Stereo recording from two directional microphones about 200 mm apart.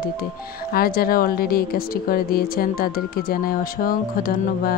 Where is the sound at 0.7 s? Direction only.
50° left (ahead or behind).